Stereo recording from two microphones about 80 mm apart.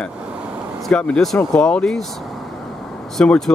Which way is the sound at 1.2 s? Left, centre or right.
Centre.